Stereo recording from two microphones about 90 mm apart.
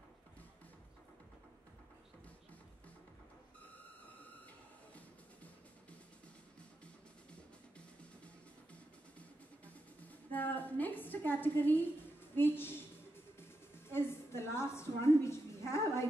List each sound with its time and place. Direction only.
4.9 s music: 15° left (ahead or behind)
10.3 s a woman's voice: 20° left (ahead or behind)
13.4 s a sound: 25° left (ahead or behind)